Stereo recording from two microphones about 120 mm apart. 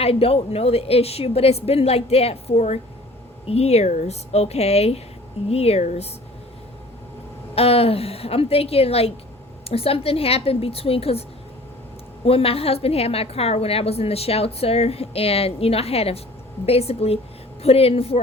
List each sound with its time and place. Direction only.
0.0 s a woman's voice: 55° left (ahead or behind)
7.5 s a woman's voice: 55° left (ahead or behind)
12.2 s a woman's voice: 55° left (ahead or behind)